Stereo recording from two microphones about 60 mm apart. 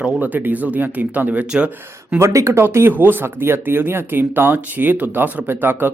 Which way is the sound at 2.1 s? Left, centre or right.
Right.